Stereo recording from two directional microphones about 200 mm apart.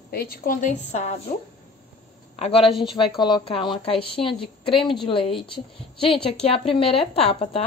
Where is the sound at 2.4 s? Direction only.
30° left (ahead or behind).